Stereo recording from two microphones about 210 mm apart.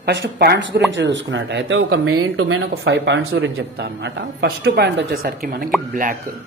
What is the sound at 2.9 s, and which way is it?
Speech, 50° right (ahead or behind).